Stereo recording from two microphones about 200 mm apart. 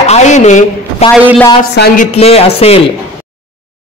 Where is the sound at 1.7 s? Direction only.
45° left (ahead or behind); by 2.8 s 30° left (ahead or behind).